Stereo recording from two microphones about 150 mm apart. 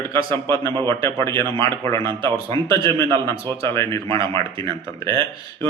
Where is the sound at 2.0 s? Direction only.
30° right (ahead or behind).